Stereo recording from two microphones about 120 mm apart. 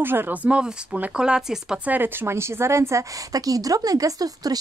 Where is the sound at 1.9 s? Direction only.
20° right (ahead or behind).